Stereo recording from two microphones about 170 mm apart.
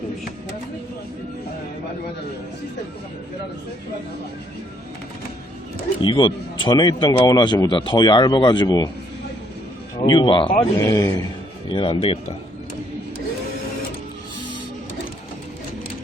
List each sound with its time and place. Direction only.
6.0 s a man's voice: 30° left (ahead or behind)
10.1 s a man's voice: 30° left (ahead or behind)
10.8 s a man's voice: 20° left (ahead or behind)
11.7 s speech: 30° left (ahead or behind)